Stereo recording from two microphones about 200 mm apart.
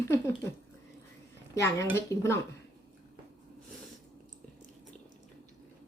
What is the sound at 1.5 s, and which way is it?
Speech, 15° left (ahead or behind).